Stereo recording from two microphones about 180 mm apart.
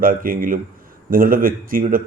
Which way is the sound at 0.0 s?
50° right (ahead or behind).